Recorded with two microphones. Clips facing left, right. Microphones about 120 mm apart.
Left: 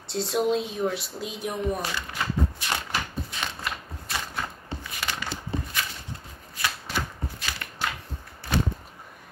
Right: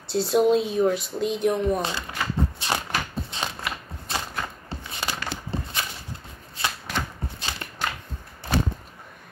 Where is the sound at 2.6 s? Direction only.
25° right (ahead or behind).